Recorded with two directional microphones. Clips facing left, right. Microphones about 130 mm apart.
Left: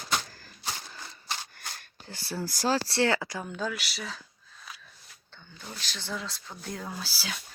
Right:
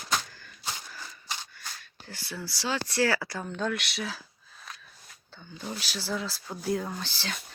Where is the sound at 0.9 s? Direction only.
25° left (ahead or behind).